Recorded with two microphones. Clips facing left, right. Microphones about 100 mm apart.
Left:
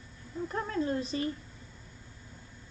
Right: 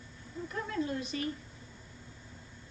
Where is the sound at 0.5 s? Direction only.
40° left (ahead or behind).